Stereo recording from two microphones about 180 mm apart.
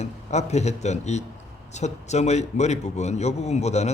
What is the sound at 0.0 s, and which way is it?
A man's voice, 40° left (ahead or behind).